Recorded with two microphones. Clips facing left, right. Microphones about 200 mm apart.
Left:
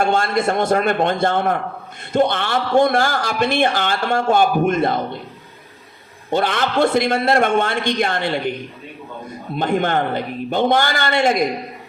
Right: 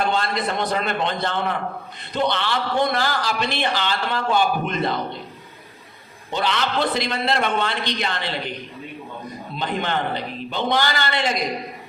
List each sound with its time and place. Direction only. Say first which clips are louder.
0.0 s a man's voice: left 5 dB; 50° left (ahead or behind)
6.3 s a man's voice: left 5 dB; 50° left (ahead or behind)
9.6 s a man's voice: left 6 dB; 50° left (ahead or behind)